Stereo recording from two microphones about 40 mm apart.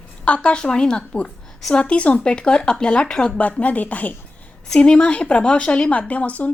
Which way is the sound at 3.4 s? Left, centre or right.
Left.